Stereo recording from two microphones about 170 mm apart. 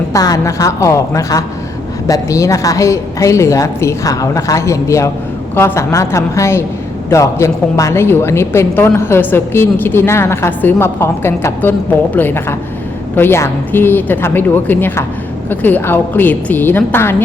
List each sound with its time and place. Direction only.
0.1 s a woman's voice: 20° left (ahead or behind)